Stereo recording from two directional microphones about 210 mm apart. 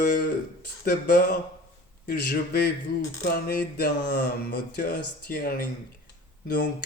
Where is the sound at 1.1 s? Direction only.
40° left (ahead or behind).